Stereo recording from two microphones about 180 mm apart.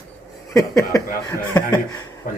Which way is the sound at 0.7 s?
20° left (ahead or behind).